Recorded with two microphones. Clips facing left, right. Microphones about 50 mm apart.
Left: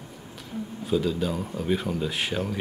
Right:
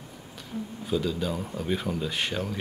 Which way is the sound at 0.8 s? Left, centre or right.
Centre.